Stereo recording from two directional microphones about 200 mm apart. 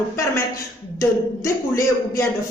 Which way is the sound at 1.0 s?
15° left (ahead or behind).